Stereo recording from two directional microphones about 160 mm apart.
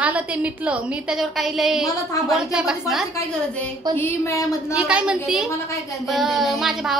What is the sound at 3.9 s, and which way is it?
Speech, 15° left (ahead or behind).